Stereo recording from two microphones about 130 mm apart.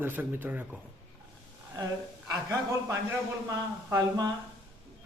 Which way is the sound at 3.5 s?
30° right (ahead or behind).